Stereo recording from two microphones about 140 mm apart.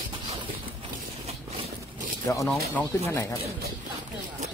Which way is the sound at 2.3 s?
20° left (ahead or behind).